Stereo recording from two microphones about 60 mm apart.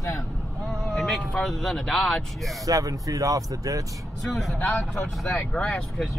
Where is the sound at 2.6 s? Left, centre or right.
Right.